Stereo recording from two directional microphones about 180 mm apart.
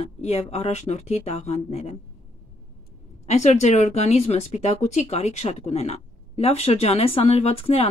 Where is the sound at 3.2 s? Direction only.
40° left (ahead or behind).